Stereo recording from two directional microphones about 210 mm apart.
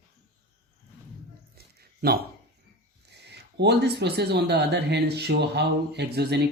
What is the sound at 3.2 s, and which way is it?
Speech, 55° right (ahead or behind).